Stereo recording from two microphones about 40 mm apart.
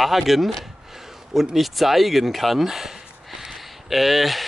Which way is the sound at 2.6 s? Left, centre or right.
Centre.